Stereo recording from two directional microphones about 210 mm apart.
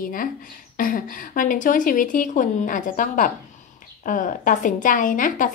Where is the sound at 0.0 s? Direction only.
40° left (ahead or behind).